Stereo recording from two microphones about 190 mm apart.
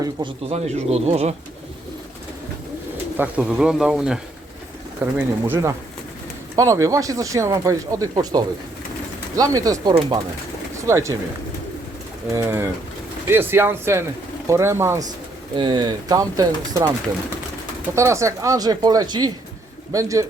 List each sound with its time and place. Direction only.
0.0 s speech: 25° right (ahead or behind)
3.2 s speech: 5° right (ahead or behind)
12.3 s speech: 15° right (ahead or behind)
15.5 s speech: 25° right (ahead or behind)
17.9 s speech: 15° right (ahead or behind)